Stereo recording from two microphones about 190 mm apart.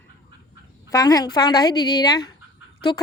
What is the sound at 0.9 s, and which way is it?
A woman's voice, 20° left (ahead or behind).